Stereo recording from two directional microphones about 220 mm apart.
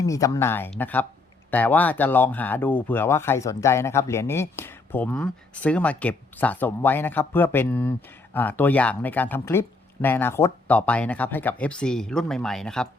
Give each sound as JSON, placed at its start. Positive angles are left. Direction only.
{"t": 0.0, "sound": "speech", "side_deg": 15}